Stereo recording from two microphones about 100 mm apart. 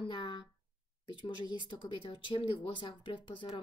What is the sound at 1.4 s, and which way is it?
A woman's voice, 50° left (ahead or behind).